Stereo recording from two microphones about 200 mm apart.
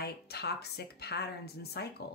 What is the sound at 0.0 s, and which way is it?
Speech, 55° left (ahead or behind).